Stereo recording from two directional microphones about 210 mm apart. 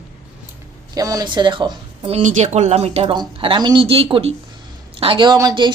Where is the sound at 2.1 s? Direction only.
35° right (ahead or behind).